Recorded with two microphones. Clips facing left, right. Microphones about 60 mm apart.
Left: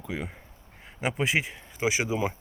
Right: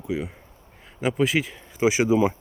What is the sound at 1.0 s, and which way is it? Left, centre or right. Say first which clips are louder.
Speech: right 4 dB; left.